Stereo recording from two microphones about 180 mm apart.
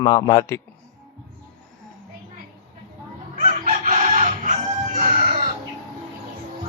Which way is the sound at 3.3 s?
45° right (ahead or behind).